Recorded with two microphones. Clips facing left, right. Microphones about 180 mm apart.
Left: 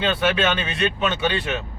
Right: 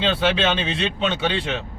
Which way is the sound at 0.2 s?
25° right (ahead or behind).